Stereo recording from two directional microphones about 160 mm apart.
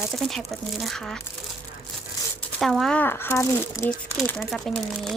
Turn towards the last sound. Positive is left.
turn(degrees=0)  # may be behind; listen again after turning